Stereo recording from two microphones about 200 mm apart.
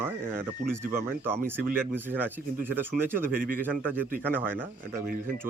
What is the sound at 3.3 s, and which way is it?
Speech, 45° right (ahead or behind).